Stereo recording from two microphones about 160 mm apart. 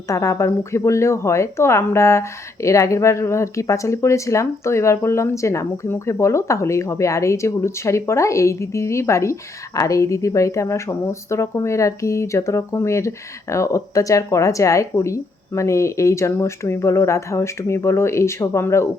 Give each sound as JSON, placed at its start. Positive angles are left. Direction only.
{"t": 0.1, "sound": "speech", "side_deg": 20}